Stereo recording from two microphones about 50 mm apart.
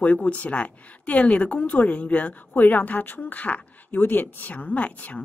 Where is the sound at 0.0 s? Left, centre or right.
Left.